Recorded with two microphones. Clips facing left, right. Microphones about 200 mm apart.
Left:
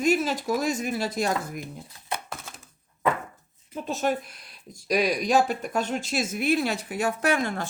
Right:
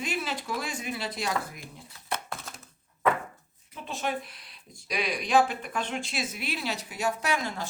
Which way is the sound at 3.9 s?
45° left (ahead or behind).